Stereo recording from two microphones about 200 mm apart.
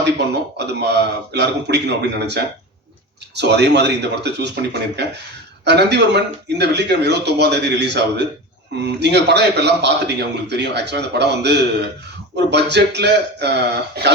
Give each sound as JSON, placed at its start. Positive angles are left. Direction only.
{"t": 0.2, "sound": "a man's voice", "side_deg": -55}